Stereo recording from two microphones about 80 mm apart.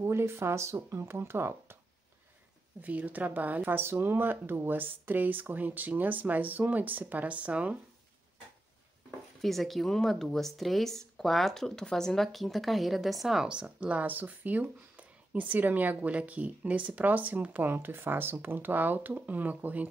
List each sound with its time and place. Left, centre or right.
0.0 s speech: right
2.8 s speech: centre
9.4 s speech: centre